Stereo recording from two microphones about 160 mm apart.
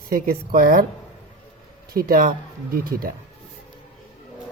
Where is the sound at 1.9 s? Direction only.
65° right (ahead or behind).